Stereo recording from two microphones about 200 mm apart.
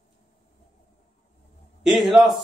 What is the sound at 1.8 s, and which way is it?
Mantra, 5° right (ahead or behind).